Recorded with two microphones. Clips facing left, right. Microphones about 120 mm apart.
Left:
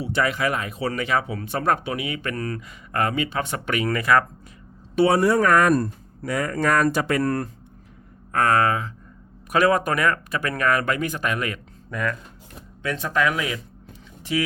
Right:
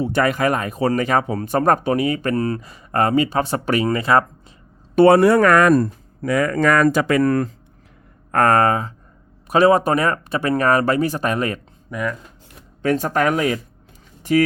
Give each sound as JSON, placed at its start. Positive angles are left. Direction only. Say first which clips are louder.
{"t": 0.0, "sound": "speech", "louder": "right 5 dB", "side_deg": -50}
{"t": 4.9, "sound": "speech", "louder": "right 6 dB", "side_deg": -55}
{"t": 8.3, "sound": "speech", "louder": "right 4 dB", "side_deg": -50}
{"t": 9.5, "sound": "speech", "louder": "right 5 dB", "side_deg": -30}
{"t": 11.9, "sound": "speech", "louder": "right 2 dB", "side_deg": -15}
{"t": 12.8, "sound": "speech", "louder": "right 5 dB", "side_deg": -45}
{"t": 14.2, "sound": "a sound", "louder": "right 8 dB", "side_deg": -45}